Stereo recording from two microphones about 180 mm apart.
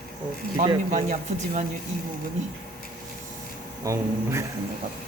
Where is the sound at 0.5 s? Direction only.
45° right (ahead or behind).